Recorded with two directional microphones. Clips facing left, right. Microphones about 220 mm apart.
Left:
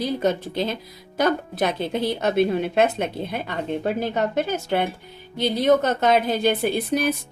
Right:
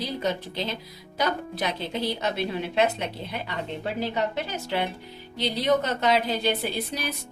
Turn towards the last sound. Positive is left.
turn(degrees=50)  # may be behind; listen again after turning